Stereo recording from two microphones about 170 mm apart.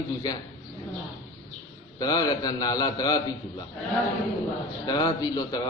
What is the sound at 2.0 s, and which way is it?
A man's voice, 25° left (ahead or behind).